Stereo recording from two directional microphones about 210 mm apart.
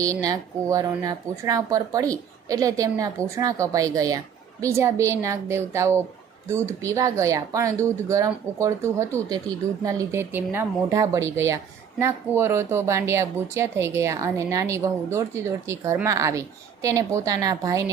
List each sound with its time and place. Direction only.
0.0 s speech: 15° right (ahead or behind)